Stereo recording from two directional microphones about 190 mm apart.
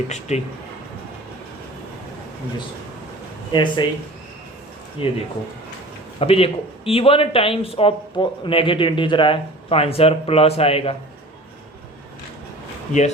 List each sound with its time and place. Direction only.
0.1 s speech: 35° left (ahead or behind)
3.5 s speech: 25° left (ahead or behind)
5.0 s speech: 30° left (ahead or behind)
6.1 s speech: 30° left (ahead or behind)